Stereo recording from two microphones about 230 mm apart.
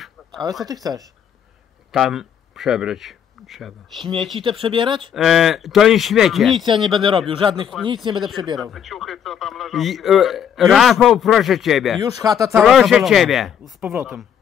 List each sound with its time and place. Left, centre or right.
0.7 s speech: centre
1.9 s speech: centre
4.4 s speech: right
5.1 s speech: centre
7.0 s speech: right
8.5 s speech: centre
12.0 s speech: centre
12.6 s speech: centre